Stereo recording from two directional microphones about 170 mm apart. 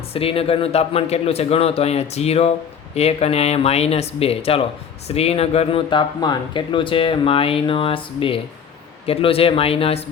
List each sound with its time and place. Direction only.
0.1 s speech: 35° left (ahead or behind)